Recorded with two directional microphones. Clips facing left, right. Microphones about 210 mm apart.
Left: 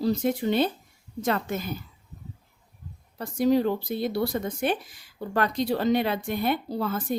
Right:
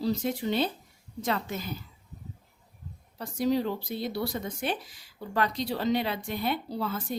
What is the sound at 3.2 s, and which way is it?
Speech, 50° left (ahead or behind).